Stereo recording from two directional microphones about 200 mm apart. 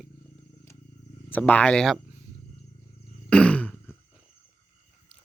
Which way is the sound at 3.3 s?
5° left (ahead or behind).